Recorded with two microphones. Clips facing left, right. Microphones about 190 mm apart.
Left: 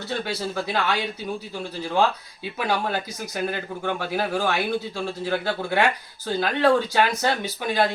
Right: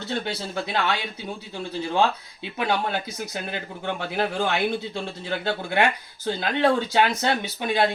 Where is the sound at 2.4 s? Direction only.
25° right (ahead or behind).